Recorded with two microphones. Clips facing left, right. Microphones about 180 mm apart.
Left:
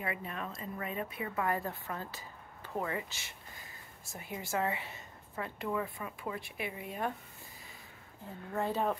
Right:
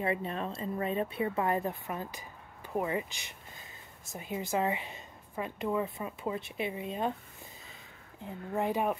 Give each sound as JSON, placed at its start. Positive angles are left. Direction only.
{"t": 0.0, "sound": "speech", "side_deg": -30}
{"t": 8.2, "sound": "a woman's voice", "side_deg": -15}